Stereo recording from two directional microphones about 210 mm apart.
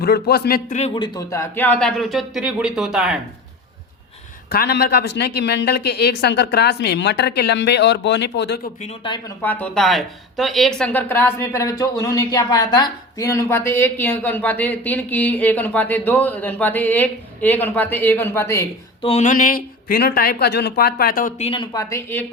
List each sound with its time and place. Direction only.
0.0 s speech: 50° left (ahead or behind)
0.8 s speech: 25° left (ahead or behind); by 3.2 s centre (ahead or behind)
4.4 s speech: 45° left (ahead or behind)
8.8 s speech: 25° left (ahead or behind)
9.4 s speech: 10° left (ahead or behind)
19.0 s speech: 35° left (ahead or behind); by 22.3 s 10° left (ahead or behind)